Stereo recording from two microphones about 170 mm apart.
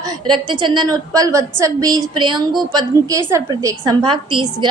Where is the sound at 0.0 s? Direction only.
30° right (ahead or behind).